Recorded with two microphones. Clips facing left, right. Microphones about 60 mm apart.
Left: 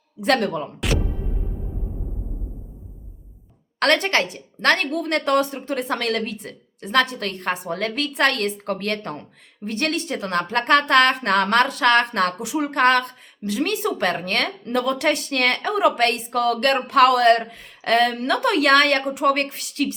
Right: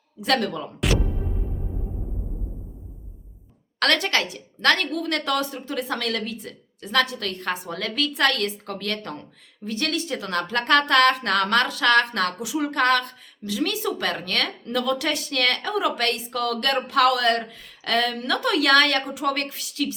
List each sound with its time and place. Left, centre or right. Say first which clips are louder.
0.2 s speech: left 3 dB; left
3.8 s speech: left 3 dB; left